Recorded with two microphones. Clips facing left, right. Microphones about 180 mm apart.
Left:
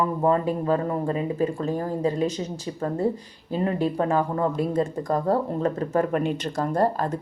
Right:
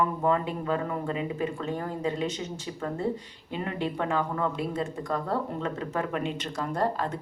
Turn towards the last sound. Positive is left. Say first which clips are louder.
# left 5 dB
turn(degrees=40)  # may be behind; listen again after turning